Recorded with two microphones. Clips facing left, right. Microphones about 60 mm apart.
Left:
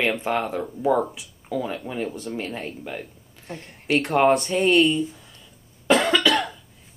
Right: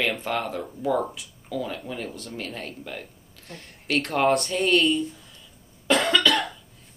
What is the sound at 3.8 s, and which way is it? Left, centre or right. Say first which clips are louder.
Speech: left 4 dB; centre.